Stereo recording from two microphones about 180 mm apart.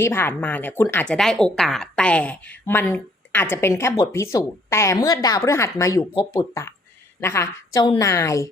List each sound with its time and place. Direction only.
0.0 s speech: 10° left (ahead or behind)